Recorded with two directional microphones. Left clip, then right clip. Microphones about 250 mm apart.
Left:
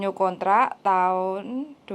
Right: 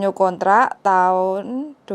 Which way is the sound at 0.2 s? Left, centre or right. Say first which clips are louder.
Right 5 dB; right.